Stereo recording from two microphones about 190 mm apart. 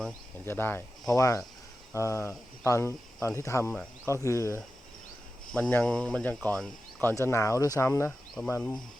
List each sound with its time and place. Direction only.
0.4 s speech: 10° left (ahead or behind)
5.5 s speech: 5° left (ahead or behind)